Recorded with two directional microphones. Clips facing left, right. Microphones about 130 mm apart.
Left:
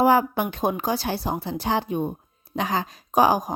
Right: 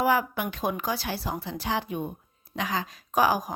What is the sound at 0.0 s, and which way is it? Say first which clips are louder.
A woman's voice: left 6 dB; 30° left (ahead or behind).